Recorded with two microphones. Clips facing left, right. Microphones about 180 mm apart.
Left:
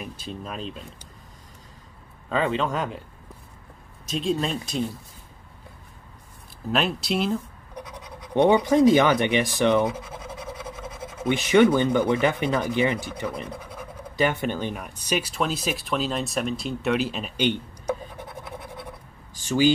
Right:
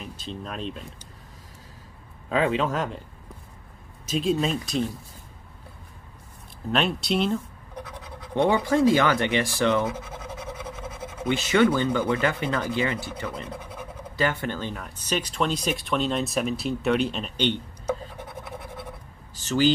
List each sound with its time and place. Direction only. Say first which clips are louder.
0.0 s speech: left 1 dB; 10° left (ahead or behind)
2.2 s speech: right 1 dB; 5° right (ahead or behind)
4.1 s speech: right 1 dB; centre (ahead or behind)
6.7 s speech: even; centre (ahead or behind)
7.7 s speech: even; 15° left (ahead or behind)
19.3 s speech: left 1 dB; 10° left (ahead or behind)